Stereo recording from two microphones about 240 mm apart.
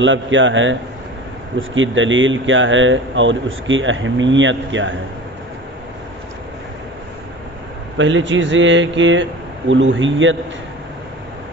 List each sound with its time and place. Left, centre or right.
0.0 s speech: right
8.0 s speech: right